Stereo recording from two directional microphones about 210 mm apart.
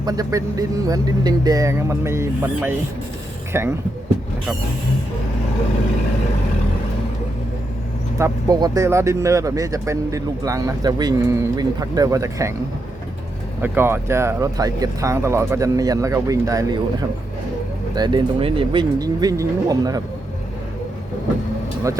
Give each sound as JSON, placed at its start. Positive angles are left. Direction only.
{"t": 0.0, "sound": "speech", "side_deg": -15}
{"t": 8.2, "sound": "speech", "side_deg": -15}
{"t": 13.6, "sound": "speech", "side_deg": -10}
{"t": 17.9, "sound": "speech", "side_deg": -20}